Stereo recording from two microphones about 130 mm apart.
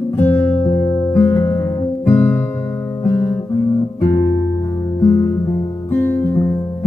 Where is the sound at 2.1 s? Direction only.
20° left (ahead or behind).